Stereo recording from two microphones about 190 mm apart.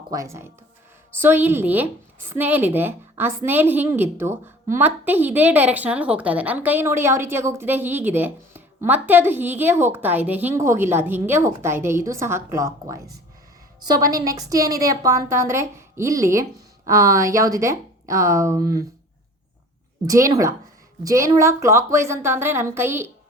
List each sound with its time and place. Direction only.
0.1 s a woman's voice: 15° right (ahead or behind)
14.0 s a woman's voice: 20° right (ahead or behind)
20.1 s a woman's voice: 15° right (ahead or behind)